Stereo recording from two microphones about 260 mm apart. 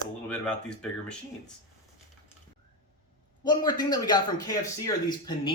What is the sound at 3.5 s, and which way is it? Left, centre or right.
Speech, centre.